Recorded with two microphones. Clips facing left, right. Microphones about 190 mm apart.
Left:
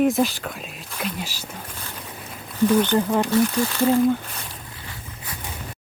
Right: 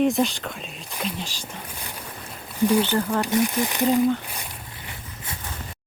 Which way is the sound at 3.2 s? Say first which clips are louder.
Left 2 dB; 15° right (ahead or behind).